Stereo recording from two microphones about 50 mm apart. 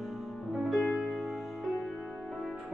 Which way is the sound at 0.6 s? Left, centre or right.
Centre.